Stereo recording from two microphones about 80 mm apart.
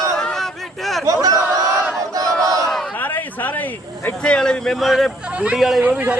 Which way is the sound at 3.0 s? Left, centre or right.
Left.